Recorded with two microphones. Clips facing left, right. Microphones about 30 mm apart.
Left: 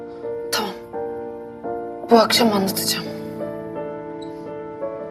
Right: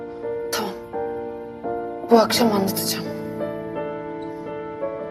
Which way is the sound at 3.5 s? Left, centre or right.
Right.